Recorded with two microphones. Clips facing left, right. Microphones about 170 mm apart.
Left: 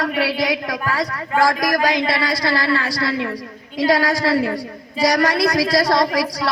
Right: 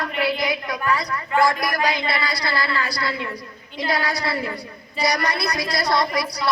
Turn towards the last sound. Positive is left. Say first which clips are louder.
# left 4 dB
turn(degrees=90)